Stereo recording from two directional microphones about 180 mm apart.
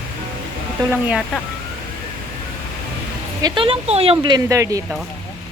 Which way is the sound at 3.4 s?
30° right (ahead or behind).